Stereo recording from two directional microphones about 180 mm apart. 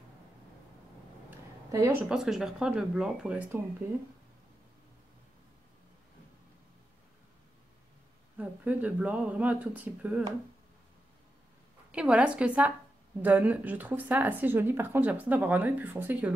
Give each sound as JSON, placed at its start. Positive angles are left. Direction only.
{"t": 1.7, "sound": "speech", "side_deg": -20}
{"t": 2.0, "sound": "speech", "side_deg": -5}
{"t": 8.4, "sound": "speech", "side_deg": -10}
{"t": 11.9, "sound": "speech", "side_deg": -5}